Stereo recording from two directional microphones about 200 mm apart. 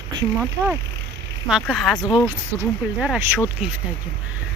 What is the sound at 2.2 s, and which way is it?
Speech, 10° right (ahead or behind).